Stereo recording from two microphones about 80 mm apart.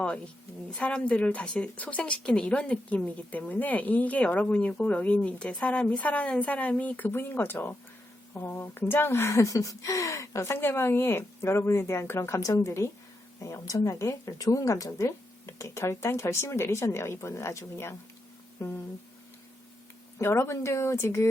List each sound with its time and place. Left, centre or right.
0.8 s a woman's voice: centre; by 12.4 s left
12.4 s speech: left
20.1 s speech: left